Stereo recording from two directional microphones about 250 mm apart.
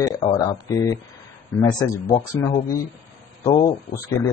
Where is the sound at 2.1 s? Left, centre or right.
Centre.